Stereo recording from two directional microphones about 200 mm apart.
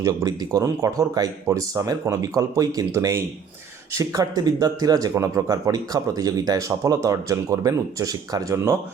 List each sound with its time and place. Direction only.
0.0 s speech: 15° right (ahead or behind)